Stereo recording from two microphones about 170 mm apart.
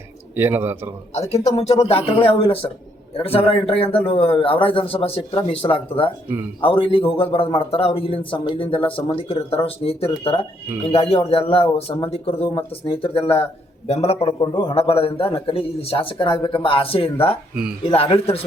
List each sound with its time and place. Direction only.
0.3 s a man's voice: 15° right (ahead or behind)
1.1 s a man's voice: 40° left (ahead or behind)
6.6 s a man's voice: 30° left (ahead or behind)
14.3 s a man's voice: 25° left (ahead or behind)